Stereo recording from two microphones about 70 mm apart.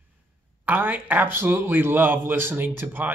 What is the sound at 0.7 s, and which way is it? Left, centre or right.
A man's voice, right.